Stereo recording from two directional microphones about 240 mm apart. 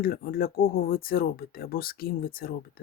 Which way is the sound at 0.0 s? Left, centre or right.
Left.